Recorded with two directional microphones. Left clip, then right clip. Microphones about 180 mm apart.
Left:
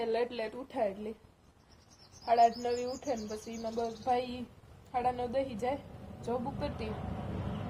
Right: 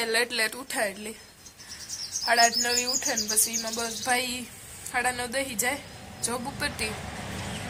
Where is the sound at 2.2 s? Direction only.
50° right (ahead or behind).